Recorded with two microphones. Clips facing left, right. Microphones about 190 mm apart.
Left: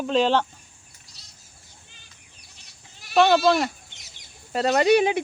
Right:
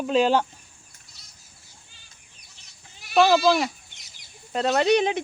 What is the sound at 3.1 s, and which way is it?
Speech, centre (ahead or behind).